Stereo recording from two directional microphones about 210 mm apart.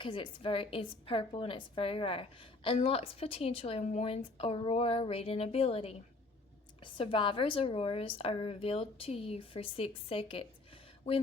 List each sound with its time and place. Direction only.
0.0 s a woman's voice: 25° left (ahead or behind)